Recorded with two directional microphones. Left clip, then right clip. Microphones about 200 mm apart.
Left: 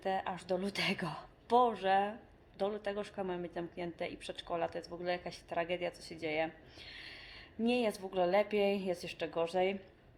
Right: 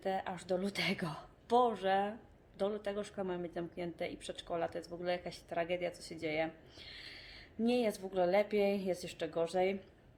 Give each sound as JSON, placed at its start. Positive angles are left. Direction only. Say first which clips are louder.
{"t": 0.0, "sound": "a woman's voice", "louder": "left 2 dB", "side_deg": -10}